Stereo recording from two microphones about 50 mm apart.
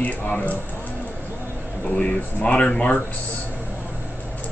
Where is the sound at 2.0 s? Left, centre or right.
Left.